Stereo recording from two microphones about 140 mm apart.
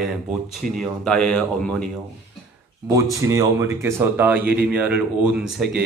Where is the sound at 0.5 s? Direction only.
Centre (ahead or behind).